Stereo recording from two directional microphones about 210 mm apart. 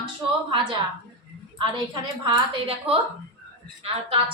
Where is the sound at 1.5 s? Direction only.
20° right (ahead or behind).